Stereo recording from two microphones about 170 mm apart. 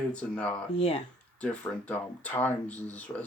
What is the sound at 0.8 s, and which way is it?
Speech, 35° left (ahead or behind).